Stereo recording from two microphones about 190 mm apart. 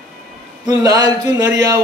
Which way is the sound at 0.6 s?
20° right (ahead or behind).